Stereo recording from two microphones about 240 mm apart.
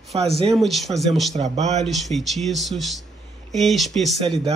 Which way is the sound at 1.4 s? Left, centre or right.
Right.